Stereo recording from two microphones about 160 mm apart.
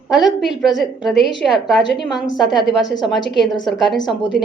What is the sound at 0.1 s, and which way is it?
A woman's voice, centre (ahead or behind).